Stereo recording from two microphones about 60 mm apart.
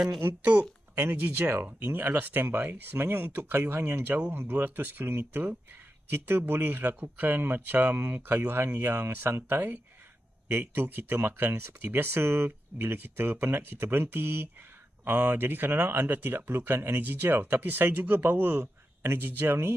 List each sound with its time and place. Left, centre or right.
0.2 s speech: right